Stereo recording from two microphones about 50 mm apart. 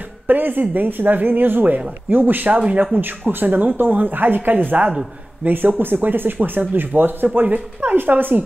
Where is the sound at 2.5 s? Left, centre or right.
Right.